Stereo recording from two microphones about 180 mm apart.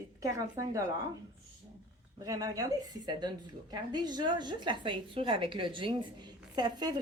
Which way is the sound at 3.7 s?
25° right (ahead or behind).